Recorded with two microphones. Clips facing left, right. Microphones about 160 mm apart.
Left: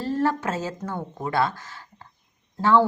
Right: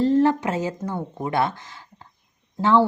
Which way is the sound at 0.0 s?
20° right (ahead or behind).